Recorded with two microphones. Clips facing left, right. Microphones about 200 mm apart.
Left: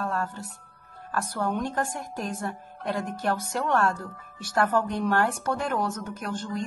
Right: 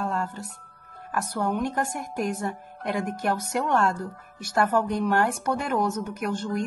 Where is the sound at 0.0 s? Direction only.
10° right (ahead or behind).